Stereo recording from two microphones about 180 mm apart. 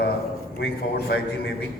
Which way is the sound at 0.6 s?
65° left (ahead or behind).